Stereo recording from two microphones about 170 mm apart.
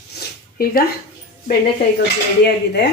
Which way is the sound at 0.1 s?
65° left (ahead or behind).